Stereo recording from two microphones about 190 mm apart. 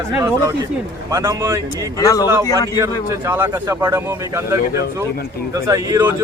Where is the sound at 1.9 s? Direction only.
20° left (ahead or behind).